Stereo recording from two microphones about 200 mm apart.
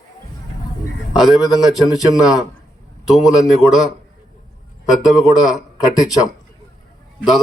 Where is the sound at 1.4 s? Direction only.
20° left (ahead or behind).